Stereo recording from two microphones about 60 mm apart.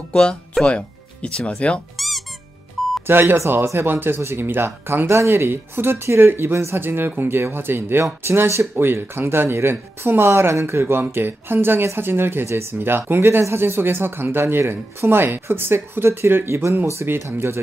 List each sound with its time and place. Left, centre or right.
0.1 s speech: centre
2.0 s squeak: centre
3.1 s speech: right